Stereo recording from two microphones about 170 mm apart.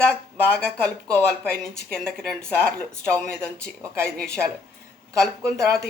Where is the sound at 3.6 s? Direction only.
15° right (ahead or behind).